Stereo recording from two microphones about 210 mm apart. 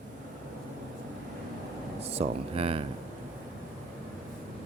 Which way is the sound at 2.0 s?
30° right (ahead or behind).